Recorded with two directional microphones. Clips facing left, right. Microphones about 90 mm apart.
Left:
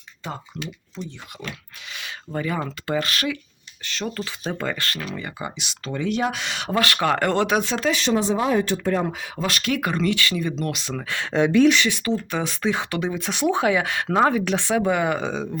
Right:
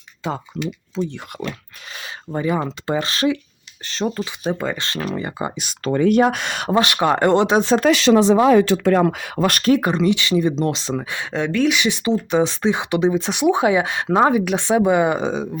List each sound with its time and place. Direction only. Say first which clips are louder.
1.5 s dog: right 5 dB; 35° right (ahead or behind)
2.3 s speech: right 5 dB; 20° right (ahead or behind)
5.0 s speech: right 6 dB; 30° right (ahead or behind); by 6.7 s 50° right (ahead or behind)
6.7 s speech: right 4 dB; 20° right (ahead or behind)
7.9 s speech: right 8 dB; 90° right; by 9.6 s 50° right (ahead or behind)
9.6 s speech: right 6 dB; 30° right (ahead or behind)
10.9 s speech: right 3 dB; 15° right (ahead or behind)
11.4 s speech: left 3 dB; 10° left (ahead or behind)
11.9 s speech: right 5 dB; 20° right (ahead or behind)